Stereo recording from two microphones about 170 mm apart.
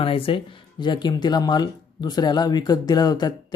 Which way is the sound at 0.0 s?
30° left (ahead or behind).